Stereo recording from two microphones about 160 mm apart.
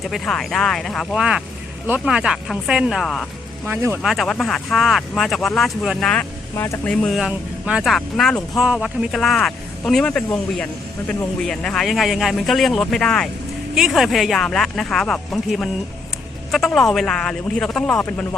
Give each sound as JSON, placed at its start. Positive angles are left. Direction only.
{"t": 0.0, "sound": "speech", "side_deg": 0}
{"t": 3.7, "sound": "speech", "side_deg": -15}
{"t": 4.0, "sound": "speech", "side_deg": 0}
{"t": 6.6, "sound": "speech", "side_deg": 15}
{"t": 7.0, "sound": "speech", "side_deg": 0}